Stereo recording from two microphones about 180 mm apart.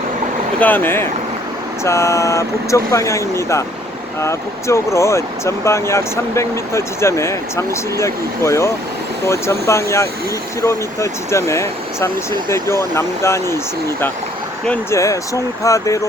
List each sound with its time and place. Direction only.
0.6 s speech: 10° left (ahead or behind)
14.6 s speech: 10° left (ahead or behind)